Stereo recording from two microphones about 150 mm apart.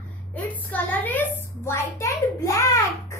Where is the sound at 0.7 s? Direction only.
10° left (ahead or behind).